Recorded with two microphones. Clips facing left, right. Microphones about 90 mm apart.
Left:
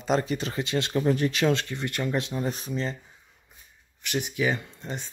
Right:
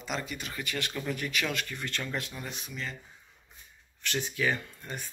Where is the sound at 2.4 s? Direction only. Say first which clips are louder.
Left 10 dB; 35° left (ahead or behind).